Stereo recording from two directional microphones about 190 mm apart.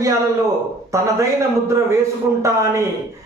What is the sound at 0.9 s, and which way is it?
Speech, 15° right (ahead or behind).